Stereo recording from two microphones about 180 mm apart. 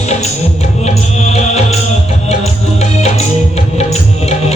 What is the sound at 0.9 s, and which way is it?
Music, 35° left (ahead or behind).